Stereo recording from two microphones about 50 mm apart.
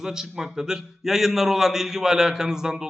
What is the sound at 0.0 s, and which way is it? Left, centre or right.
A man's voice, centre.